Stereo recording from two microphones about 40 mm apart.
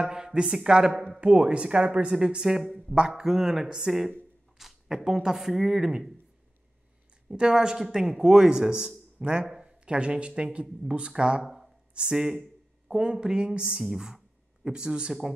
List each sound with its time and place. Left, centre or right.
0.0 s speech: centre
7.3 s speech: right
9.2 s speech: right
9.5 s a sound: centre
9.9 s speech: right
10.8 s speech: centre
11.4 s a sound: centre
11.9 s speech: right
12.3 s a sound: centre
13.0 s speech: right
13.8 s speech: centre